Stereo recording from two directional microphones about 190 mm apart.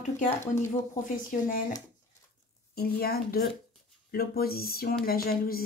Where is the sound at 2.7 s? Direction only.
55° left (ahead or behind).